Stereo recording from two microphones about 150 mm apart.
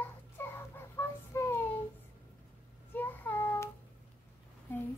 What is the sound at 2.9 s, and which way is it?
Child singing, 10° left (ahead or behind).